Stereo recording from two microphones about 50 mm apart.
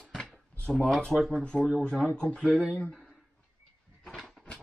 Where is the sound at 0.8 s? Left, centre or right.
Centre.